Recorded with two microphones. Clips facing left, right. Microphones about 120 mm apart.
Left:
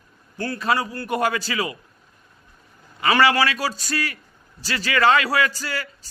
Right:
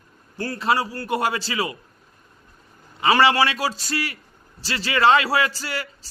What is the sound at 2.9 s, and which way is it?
A man's voice, 25° right (ahead or behind).